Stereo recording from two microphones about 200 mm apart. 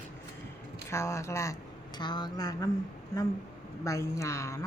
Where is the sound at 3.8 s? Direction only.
15° left (ahead or behind).